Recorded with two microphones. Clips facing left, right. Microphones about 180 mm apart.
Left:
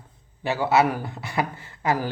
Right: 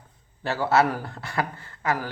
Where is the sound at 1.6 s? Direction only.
20° left (ahead or behind).